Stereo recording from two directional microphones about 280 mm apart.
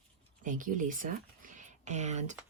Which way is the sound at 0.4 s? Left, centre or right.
Right.